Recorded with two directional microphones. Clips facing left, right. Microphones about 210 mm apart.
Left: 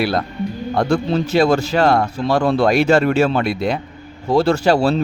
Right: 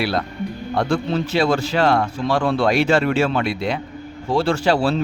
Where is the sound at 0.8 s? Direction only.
40° left (ahead or behind).